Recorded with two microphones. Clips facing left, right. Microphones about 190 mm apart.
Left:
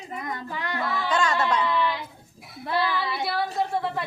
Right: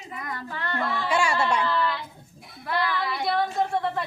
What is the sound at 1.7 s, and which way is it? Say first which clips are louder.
A woman's voice: left 1 dB; 10° left (ahead or behind).